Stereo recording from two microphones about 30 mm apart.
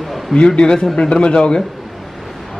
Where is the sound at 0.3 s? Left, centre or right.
Left.